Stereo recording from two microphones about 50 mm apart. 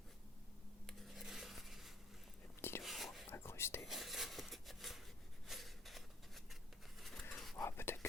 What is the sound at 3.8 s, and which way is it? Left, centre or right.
Filing, centre.